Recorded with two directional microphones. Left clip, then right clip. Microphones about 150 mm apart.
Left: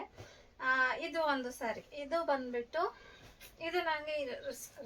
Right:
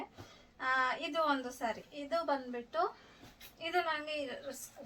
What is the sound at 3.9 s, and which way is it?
Speech, 20° left (ahead or behind).